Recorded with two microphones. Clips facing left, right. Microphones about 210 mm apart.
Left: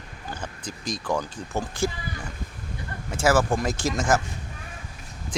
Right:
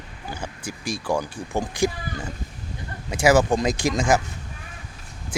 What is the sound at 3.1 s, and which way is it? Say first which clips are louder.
Speech: right 4 dB; 15° right (ahead or behind).